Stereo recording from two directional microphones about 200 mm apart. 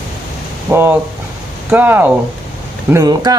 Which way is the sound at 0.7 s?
10° right (ahead or behind).